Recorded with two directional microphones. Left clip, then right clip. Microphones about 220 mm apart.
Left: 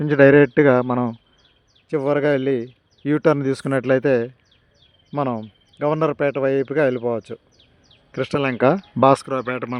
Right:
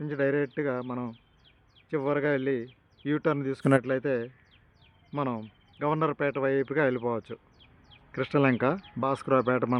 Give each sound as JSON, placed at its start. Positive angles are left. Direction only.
{"t": 0.0, "sound": "speech", "side_deg": 55}
{"t": 1.9, "sound": "speech", "side_deg": 35}
{"t": 3.6, "sound": "speech", "side_deg": 0}
{"t": 3.8, "sound": "speech", "side_deg": 45}
{"t": 9.2, "sound": "speech", "side_deg": 0}